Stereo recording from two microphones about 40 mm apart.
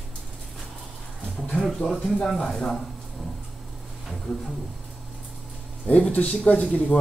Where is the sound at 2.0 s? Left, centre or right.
Centre.